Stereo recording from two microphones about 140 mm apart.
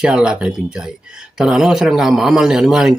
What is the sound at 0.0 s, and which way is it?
Speech, 5° right (ahead or behind).